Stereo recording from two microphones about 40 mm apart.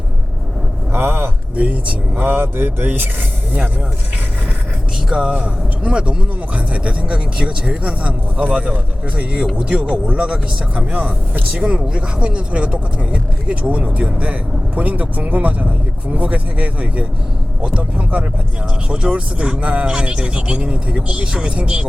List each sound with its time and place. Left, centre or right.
0.9 s a sound: right
1.5 s speech: right
5.3 s speech: right
10.9 s speech: right
11.6 s speech: right
18.9 s speech: right